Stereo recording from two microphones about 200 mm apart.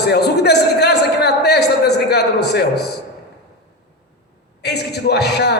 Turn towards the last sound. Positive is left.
turn(degrees=55)  # may be behind; listen again after turning